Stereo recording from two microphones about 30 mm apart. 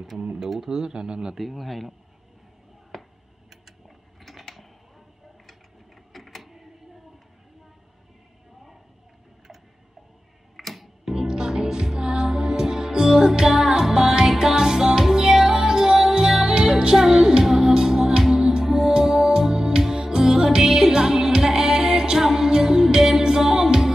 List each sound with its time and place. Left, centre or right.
0.4 s speech: centre
0.7 s speech: right
1.3 s a man's voice: centre
2.9 s a sound: centre
3.8 s mechanisms: centre
6.1 s printer: centre
10.5 s music: centre
11.1 s music: right
18.7 s music: centre